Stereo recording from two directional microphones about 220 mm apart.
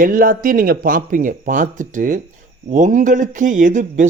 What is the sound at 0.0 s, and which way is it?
Speech, 40° right (ahead or behind).